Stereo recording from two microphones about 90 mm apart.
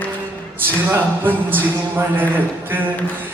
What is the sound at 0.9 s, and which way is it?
Speech, 20° right (ahead or behind).